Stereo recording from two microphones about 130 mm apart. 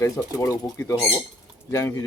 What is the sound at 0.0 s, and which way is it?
Speech, 25° left (ahead or behind).